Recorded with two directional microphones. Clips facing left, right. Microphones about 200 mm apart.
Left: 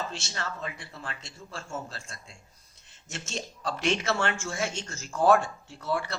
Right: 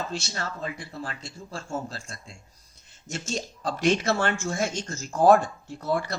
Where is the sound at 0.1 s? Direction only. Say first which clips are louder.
Right 4 dB; 40° right (ahead or behind).